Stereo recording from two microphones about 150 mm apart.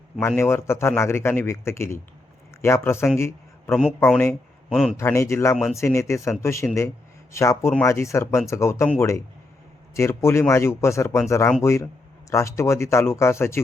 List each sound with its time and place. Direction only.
0.2 s a man's voice: 15° left (ahead or behind)
3.2 s a sound: 15° left (ahead or behind)
3.8 s a man's voice: centre (ahead or behind)
4.9 s speech: 20° left (ahead or behind)